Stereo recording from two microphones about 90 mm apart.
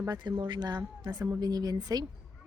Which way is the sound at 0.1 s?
60° right (ahead or behind).